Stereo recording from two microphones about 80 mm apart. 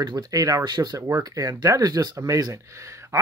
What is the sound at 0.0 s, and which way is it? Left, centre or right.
Speech, right.